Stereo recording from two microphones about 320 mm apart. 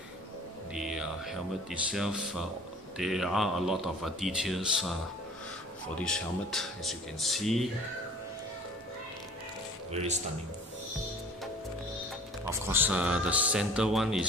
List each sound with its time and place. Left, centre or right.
0.7 s speech: centre
5.9 s speech: centre
9.9 s speech: right
12.4 s speech: centre